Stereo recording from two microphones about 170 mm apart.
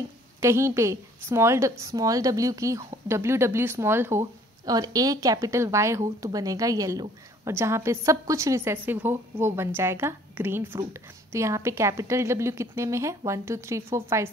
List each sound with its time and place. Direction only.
0.4 s a woman's voice: 15° right (ahead or behind)